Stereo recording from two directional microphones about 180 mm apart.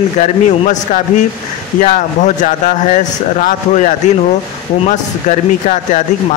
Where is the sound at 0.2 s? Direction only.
40° left (ahead or behind).